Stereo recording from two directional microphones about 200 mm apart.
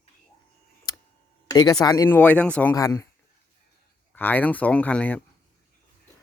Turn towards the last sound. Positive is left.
turn(degrees=10)  # may be behind; listen again after turning